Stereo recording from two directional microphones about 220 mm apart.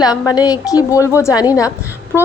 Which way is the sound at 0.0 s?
15° left (ahead or behind).